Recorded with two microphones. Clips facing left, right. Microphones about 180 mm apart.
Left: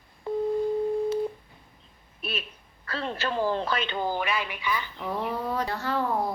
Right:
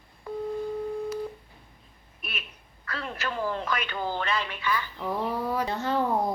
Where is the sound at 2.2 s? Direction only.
30° left (ahead or behind).